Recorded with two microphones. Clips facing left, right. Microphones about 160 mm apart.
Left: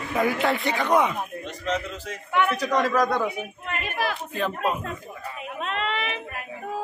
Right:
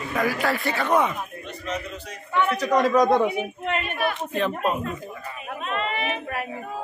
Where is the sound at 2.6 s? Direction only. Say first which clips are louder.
Right 3 dB; 15° right (ahead or behind).